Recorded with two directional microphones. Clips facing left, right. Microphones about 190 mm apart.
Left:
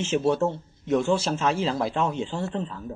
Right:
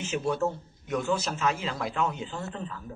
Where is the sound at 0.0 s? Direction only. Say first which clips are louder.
Left 5 dB; 25° left (ahead or behind).